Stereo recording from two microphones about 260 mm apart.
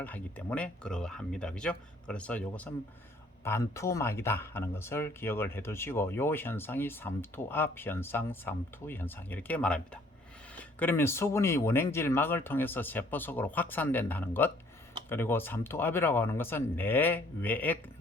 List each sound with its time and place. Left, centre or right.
0.0 s speech: centre